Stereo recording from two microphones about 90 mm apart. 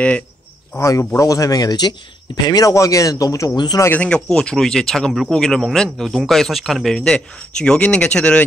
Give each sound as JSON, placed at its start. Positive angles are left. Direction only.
{"t": 0.7, "sound": "speech", "side_deg": 35}
{"t": 3.5, "sound": "speech", "side_deg": 55}
{"t": 4.0, "sound": "a man's voice", "side_deg": 10}